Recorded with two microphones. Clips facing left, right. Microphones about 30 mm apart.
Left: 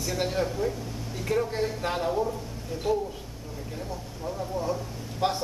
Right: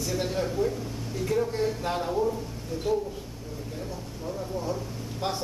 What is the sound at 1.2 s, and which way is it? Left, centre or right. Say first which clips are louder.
Speech: even; centre.